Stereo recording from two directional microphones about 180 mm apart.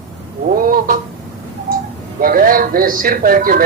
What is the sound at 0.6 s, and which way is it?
Speech, 50° right (ahead or behind).